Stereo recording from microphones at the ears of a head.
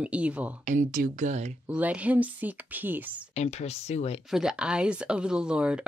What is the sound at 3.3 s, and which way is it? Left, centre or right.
Speech, left.